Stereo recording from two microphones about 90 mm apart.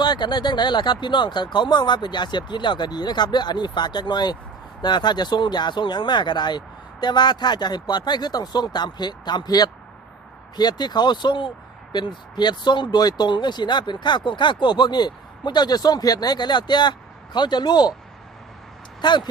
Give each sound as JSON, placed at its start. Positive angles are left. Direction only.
{"t": 0.0, "sound": "speech", "side_deg": 55}
{"t": 19.0, "sound": "speech", "side_deg": 55}